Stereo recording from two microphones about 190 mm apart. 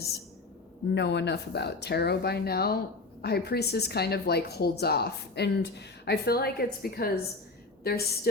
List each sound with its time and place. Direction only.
0.9 s speech: 65° left (ahead or behind)